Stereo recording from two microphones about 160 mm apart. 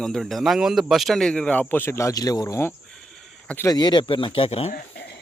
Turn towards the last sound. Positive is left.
turn(degrees=90)